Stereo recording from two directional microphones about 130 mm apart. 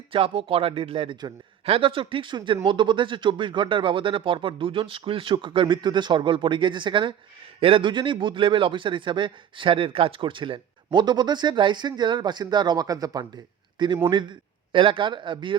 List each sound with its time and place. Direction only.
0.1 s a man's voice: 45° right (ahead or behind)